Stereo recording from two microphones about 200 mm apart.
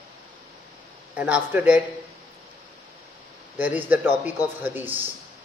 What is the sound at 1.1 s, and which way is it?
Speech, 5° right (ahead or behind).